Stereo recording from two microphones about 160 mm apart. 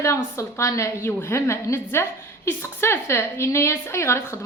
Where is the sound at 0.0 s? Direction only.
15° left (ahead or behind).